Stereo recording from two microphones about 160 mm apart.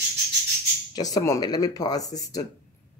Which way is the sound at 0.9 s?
25° left (ahead or behind).